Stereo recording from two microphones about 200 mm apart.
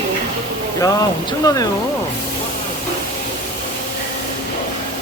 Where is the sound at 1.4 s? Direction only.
20° left (ahead or behind).